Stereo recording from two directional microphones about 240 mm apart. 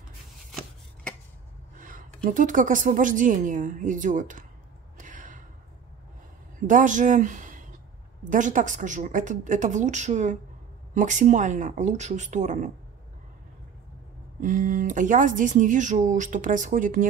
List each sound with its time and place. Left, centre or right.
1.8 s a sound: right
2.2 s speech: right
4.9 s gasp: right
6.7 s speech: right
14.4 s speech: right